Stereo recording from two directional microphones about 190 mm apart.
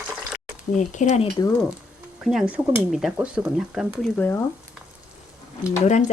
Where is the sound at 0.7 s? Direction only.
40° left (ahead or behind).